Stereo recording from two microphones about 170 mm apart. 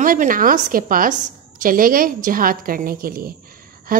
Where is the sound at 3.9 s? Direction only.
55° right (ahead or behind).